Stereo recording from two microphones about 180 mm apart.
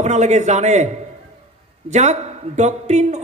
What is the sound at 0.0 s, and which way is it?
Speech, 40° right (ahead or behind).